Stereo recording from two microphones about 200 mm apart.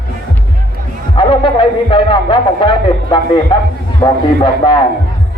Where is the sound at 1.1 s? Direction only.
25° left (ahead or behind).